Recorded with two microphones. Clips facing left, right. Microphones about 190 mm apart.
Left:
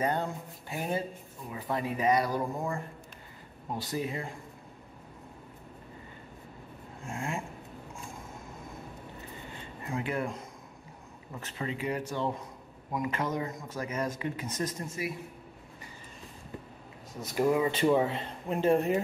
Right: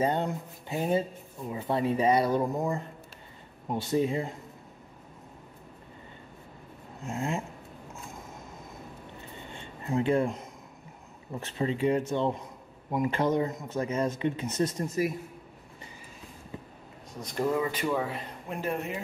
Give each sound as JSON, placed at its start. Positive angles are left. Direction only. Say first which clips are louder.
{"t": 0.0, "sound": "speech", "louder": "right 3 dB", "side_deg": -20}
{"t": 7.1, "sound": "speech", "louder": "right 4 dB", "side_deg": -20}
{"t": 9.5, "sound": "a sound", "louder": "right 6 dB", "side_deg": -25}
{"t": 11.3, "sound": "speech", "louder": "right 6 dB", "side_deg": -30}
{"t": 17.1, "sound": "speech", "louder": "left 2 dB", "side_deg": 5}
{"t": 17.6, "sound": "speech", "louder": "left 4 dB", "side_deg": 25}